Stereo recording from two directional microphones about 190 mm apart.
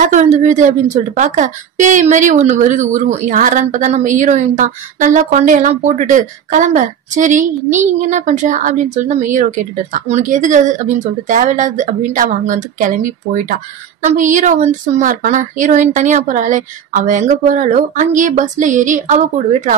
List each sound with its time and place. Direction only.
0.0 s speech: 40° right (ahead or behind)